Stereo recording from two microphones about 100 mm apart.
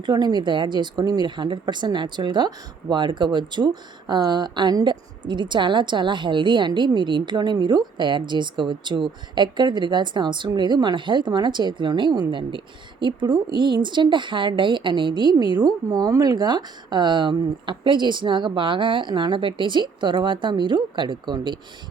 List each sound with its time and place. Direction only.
0.0 s speech: 45° right (ahead or behind)